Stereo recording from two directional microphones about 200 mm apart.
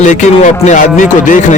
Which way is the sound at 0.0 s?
40° left (ahead or behind).